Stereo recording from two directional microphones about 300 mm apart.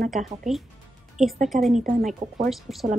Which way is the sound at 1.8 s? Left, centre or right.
Right.